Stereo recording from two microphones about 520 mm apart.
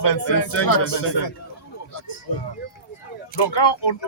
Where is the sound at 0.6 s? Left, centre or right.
Left.